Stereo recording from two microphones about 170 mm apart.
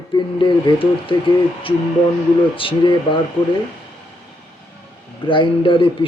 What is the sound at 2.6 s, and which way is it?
Speech, 30° left (ahead or behind).